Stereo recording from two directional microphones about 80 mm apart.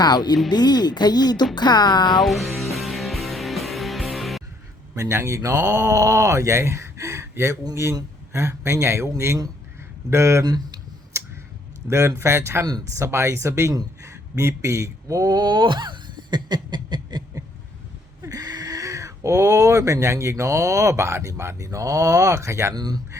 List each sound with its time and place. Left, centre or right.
0.0 s speech: left
2.2 s music: centre
4.9 s speech: right
10.4 s speech: right
11.1 s tick: right
11.9 s speech: right
14.0 s a sound: right
18.2 s speech: right
22.7 s speech: right